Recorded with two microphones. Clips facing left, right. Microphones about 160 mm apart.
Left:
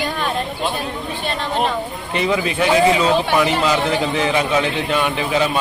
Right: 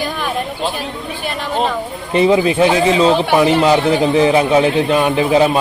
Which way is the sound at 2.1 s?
30° right (ahead or behind).